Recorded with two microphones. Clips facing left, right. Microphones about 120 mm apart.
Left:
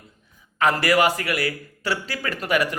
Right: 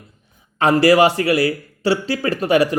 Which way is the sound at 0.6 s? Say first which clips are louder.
Right 6 dB; 30° right (ahead or behind).